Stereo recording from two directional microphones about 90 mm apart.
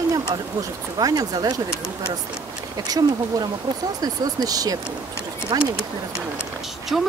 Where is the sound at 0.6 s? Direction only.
45° right (ahead or behind).